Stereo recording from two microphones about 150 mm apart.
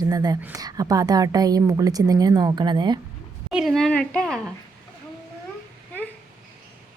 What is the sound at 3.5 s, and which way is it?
A woman's voice, 5° right (ahead or behind).